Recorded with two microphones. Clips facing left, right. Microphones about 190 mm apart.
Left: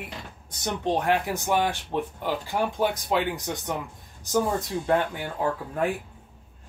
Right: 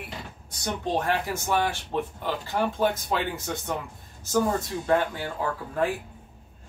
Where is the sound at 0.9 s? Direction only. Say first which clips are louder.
Left 1 dB; 15° left (ahead or behind).